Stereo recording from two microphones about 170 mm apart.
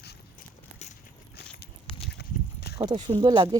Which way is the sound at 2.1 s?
75° left (ahead or behind).